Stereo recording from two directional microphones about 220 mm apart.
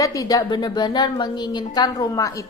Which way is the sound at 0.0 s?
15° left (ahead or behind).